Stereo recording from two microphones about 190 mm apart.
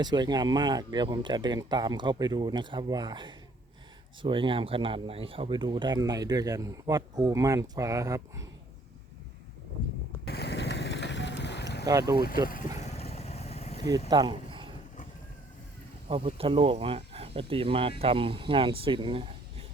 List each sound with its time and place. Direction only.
0.0 s speech: 20° right (ahead or behind)
10.2 s boat: 60° left (ahead or behind)
11.9 s speech: 20° right (ahead or behind)
12.8 s vehicle: 35° left (ahead or behind)
14.1 s speech: 25° right (ahead or behind)
16.0 s speech: 30° right (ahead or behind)